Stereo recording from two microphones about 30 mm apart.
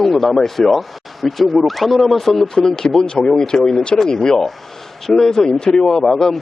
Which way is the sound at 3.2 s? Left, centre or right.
Left.